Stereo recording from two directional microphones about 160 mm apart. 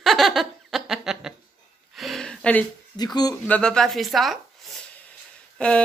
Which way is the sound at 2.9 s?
25° left (ahead or behind).